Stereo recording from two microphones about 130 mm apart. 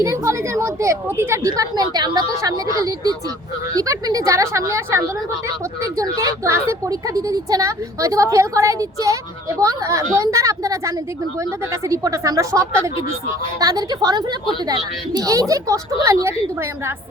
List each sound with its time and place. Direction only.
0.0 s speech: 20° right (ahead or behind)